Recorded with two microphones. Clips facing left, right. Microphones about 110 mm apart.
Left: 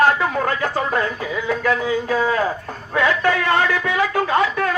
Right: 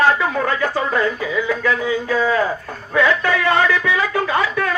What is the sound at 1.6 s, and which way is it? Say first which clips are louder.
Speech: even; 45° left (ahead or behind).